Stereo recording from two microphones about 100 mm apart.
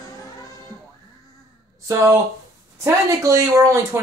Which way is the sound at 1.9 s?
30° right (ahead or behind).